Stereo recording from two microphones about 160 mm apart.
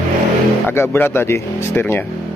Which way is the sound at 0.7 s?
15° left (ahead or behind).